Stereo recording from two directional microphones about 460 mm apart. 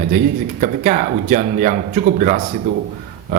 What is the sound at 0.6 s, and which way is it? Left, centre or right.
A man's voice, centre.